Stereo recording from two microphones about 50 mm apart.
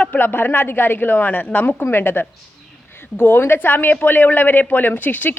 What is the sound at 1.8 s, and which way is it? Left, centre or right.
A woman's voice, left.